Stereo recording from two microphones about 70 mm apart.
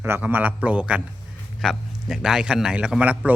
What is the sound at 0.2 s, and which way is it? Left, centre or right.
Speech, right.